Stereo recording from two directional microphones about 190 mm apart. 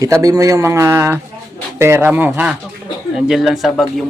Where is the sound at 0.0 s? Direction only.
20° right (ahead or behind).